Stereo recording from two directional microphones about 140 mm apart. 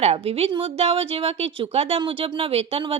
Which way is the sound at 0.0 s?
45° right (ahead or behind).